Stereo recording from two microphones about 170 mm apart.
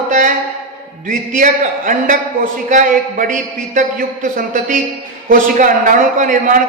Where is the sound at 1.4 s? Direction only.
50° right (ahead or behind).